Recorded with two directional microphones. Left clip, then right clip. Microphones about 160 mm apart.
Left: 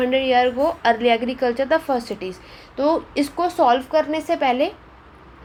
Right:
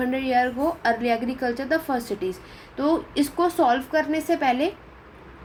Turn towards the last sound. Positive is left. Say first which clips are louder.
# left 3 dB
turn(degrees=30)  # may be behind; listen again after turning